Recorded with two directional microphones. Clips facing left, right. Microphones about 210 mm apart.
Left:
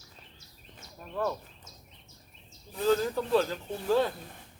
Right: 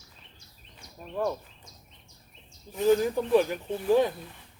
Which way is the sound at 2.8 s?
15° right (ahead or behind).